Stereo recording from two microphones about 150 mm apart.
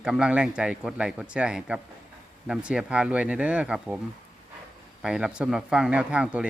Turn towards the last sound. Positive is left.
turn(degrees=-5)  # may be behind; listen again after turning